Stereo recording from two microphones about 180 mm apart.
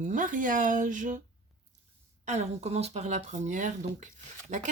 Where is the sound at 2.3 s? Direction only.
40° right (ahead or behind).